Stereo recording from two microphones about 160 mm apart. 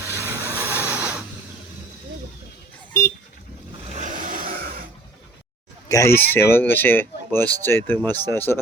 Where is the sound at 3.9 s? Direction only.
50° right (ahead or behind); by 4.9 s 70° right (ahead or behind).